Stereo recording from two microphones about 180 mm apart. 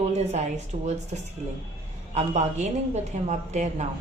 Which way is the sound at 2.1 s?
40° right (ahead or behind).